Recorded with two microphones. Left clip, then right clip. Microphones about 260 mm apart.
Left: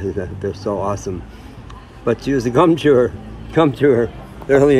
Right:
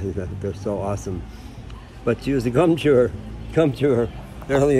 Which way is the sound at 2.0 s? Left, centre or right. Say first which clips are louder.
Left 4 dB; left.